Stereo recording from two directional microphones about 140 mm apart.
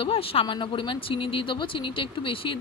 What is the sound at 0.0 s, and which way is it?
Speech, 40° left (ahead or behind).